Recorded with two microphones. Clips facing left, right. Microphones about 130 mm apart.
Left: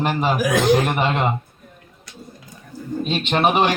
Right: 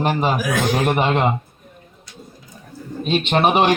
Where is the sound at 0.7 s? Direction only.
10° right (ahead or behind).